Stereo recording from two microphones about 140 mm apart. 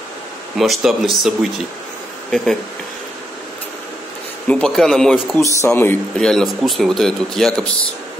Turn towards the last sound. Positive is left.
turn(degrees=5)  # may be behind; listen again after turning